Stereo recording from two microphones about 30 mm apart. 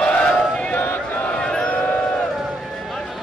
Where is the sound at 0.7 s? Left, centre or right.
Left.